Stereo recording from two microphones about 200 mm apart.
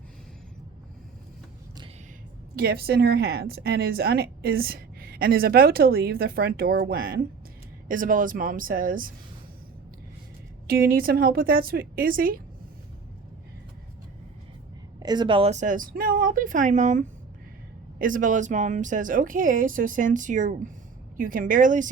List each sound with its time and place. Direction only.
2.6 s a woman's voice: 50° right (ahead or behind)
10.7 s a woman's voice: 50° right (ahead or behind)
14.9 s a woman's voice: 20° right (ahead or behind); by 21.8 s 40° right (ahead or behind)